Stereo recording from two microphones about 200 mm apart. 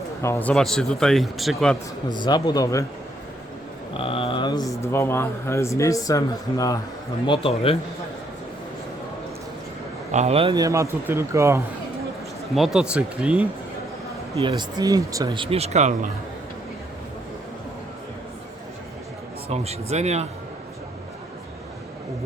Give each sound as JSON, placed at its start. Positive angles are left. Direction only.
{"t": 0.2, "sound": "speech", "side_deg": 10}
{"t": 2.0, "sound": "speech", "side_deg": 20}
{"t": 3.9, "sound": "speech", "side_deg": 25}
{"t": 7.3, "sound": "speech", "side_deg": 30}
{"t": 10.1, "sound": "a man's voice", "side_deg": -35}
{"t": 12.5, "sound": "speech", "side_deg": 0}
{"t": 14.6, "sound": "speech", "side_deg": -20}
{"t": 19.5, "sound": "speech", "side_deg": -30}